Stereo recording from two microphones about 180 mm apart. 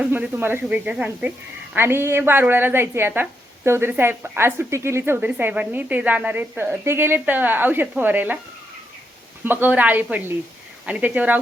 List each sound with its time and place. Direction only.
0.0 s a woman's voice: 10° right (ahead or behind)
9.4 s a woman's voice: 10° right (ahead or behind)